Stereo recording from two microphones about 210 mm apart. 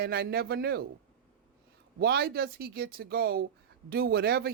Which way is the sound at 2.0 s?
50° right (ahead or behind).